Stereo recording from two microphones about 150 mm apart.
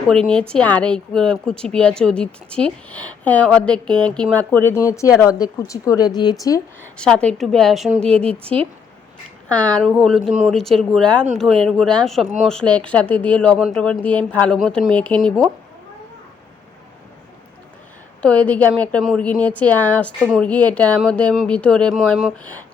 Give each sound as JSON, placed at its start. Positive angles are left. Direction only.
{"t": 0.1, "sound": "a woman's voice", "side_deg": 5}
{"t": 6.9, "sound": "a woman's voice", "side_deg": 5}
{"t": 18.2, "sound": "a woman's voice", "side_deg": 10}